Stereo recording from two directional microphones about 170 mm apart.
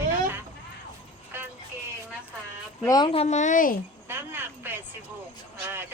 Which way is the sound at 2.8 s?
25° left (ahead or behind).